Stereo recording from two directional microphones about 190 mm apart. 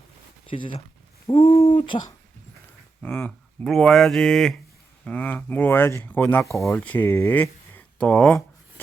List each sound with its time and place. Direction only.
0.4 s speech: 25° left (ahead or behind)
3.0 s speech: 10° left (ahead or behind)